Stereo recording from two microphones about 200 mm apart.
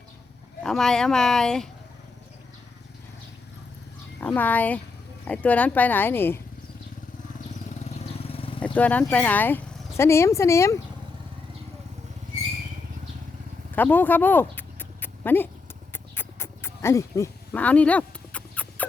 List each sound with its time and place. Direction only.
0.6 s speech: 5° left (ahead or behind)
4.2 s speech: 10° left (ahead or behind)
7.9 s vehicle: 30° left (ahead or behind)
8.6 s speech: 5° left (ahead or behind)
13.7 s a sound: 10° left (ahead or behind)